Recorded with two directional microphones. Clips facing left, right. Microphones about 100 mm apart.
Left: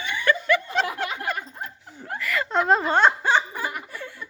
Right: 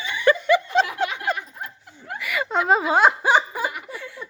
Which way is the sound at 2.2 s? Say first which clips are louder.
Even; 5° right (ahead or behind).